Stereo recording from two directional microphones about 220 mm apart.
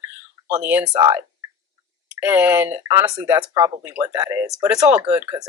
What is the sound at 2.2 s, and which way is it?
Speech, 10° right (ahead or behind).